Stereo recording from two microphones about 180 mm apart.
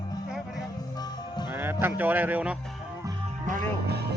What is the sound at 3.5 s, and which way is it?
Speech, 55° right (ahead or behind).